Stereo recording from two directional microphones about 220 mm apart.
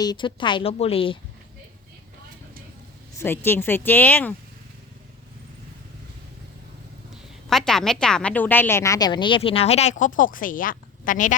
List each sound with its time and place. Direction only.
0.0 s a woman's voice: 20° left (ahead or behind)
3.2 s speech: 10° left (ahead or behind)
7.5 s a woman's voice: centre (ahead or behind); by 11.3 s 35° left (ahead or behind)